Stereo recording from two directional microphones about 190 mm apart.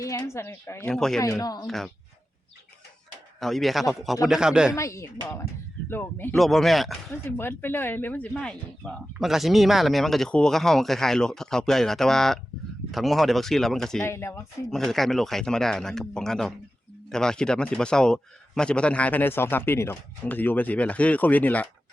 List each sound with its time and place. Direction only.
0.0 s a man's voice: 15° left (ahead or behind)
0.9 s speech: centre (ahead or behind)
1.2 s speech: 20° left (ahead or behind)
1.6 s speech: centre (ahead or behind)
3.4 s speech: centre (ahead or behind)
4.7 s a man's voice: 15° left (ahead or behind); by 7.0 s centre (ahead or behind)
7.1 s a man's voice: 10° left (ahead or behind)
14.0 s a man's voice: 15° left (ahead or behind)
14.7 s a man's voice: centre (ahead or behind)